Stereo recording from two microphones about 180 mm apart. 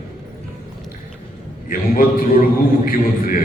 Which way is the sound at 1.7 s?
50° left (ahead or behind).